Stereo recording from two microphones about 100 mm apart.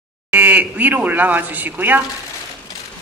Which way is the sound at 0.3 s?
15° right (ahead or behind).